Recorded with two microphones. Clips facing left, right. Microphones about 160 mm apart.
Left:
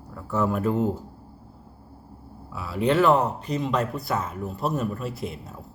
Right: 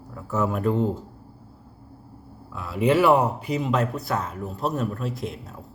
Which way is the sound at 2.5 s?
Centre (ahead or behind).